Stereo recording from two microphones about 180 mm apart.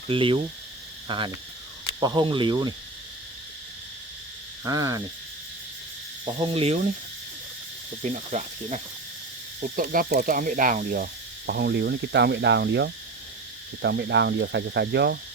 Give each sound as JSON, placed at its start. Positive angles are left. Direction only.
{"t": 0.1, "sound": "speech", "side_deg": -30}
{"t": 1.0, "sound": "cricket", "side_deg": -25}
{"t": 2.0, "sound": "speech", "side_deg": -20}
{"t": 4.6, "sound": "speech", "side_deg": -20}
{"t": 6.4, "sound": "insect", "side_deg": -30}
{"t": 8.0, "sound": "insect", "side_deg": -40}
{"t": 9.6, "sound": "speech", "side_deg": -50}